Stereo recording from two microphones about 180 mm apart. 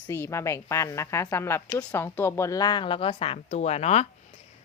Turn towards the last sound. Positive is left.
turn(degrees=35)  # may be behind; listen again after turning